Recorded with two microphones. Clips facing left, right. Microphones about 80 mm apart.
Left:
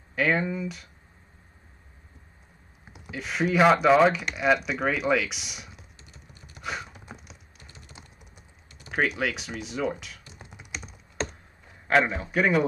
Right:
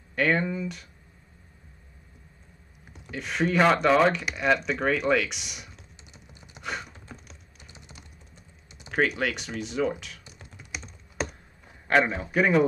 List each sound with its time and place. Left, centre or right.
0.1 s speech: centre
2.9 s speech: centre
6.1 s gasp: centre
6.6 s a sound: centre
7.1 s typing: left
8.9 s speech: centre
10.4 s typing: centre
11.2 s a sound: centre
11.9 s speech: centre